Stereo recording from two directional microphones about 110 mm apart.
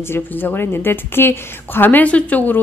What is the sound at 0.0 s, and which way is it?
A woman's voice, 20° left (ahead or behind).